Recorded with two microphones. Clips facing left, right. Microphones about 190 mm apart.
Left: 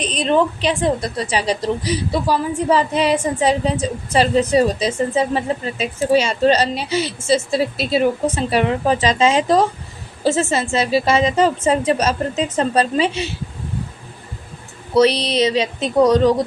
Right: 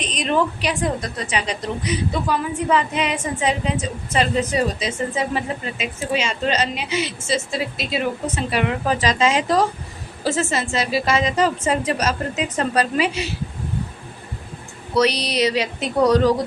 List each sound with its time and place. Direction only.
0.0 s a woman's voice: 30° left (ahead or behind)
14.9 s a woman's voice: 25° left (ahead or behind)